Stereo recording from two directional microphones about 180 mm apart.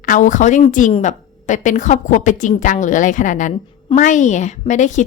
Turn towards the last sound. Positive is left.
turn(degrees=40)  # may be behind; listen again after turning